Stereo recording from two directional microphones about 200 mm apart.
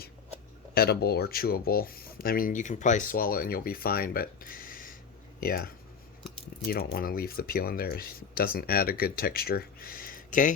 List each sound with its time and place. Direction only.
0.7 s speech: 50° left (ahead or behind)